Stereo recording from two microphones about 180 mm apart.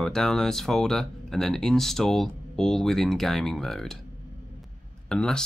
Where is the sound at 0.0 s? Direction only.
5° left (ahead or behind).